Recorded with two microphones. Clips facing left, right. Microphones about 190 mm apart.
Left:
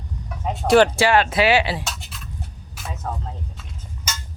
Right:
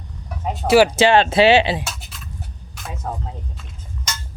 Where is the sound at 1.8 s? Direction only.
Centre (ahead or behind).